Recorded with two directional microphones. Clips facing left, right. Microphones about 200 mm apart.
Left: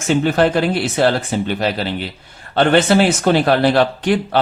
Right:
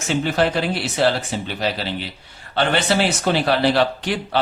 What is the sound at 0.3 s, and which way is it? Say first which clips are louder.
Speech: left 5 dB; 50° left (ahead or behind).